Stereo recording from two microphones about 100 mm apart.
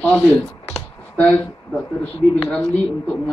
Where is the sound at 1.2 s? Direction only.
15° left (ahead or behind).